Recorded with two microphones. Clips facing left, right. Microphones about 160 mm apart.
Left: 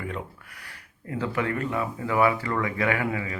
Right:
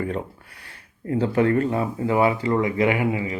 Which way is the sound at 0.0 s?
30° right (ahead or behind).